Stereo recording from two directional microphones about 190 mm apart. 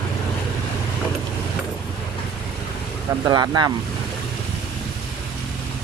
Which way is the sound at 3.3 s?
20° right (ahead or behind).